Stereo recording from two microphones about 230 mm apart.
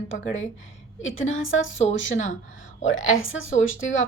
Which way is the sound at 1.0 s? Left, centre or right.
Left.